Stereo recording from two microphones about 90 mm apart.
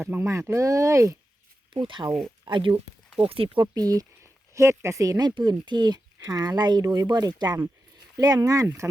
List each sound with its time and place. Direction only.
0.0 s speech: 30° right (ahead or behind)
1.7 s speech: 65° right (ahead or behind)
3.2 s speech: 90° right
3.8 s speech: 45° right (ahead or behind)
4.2 s speech: 35° right (ahead or behind)
5.3 s speech: 55° right (ahead or behind)
8.8 s speech: 20° right (ahead or behind)